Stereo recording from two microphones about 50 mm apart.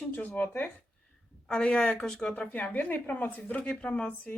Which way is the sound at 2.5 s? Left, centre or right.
Left.